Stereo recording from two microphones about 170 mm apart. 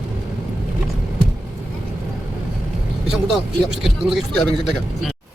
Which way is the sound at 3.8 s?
Centre (ahead or behind).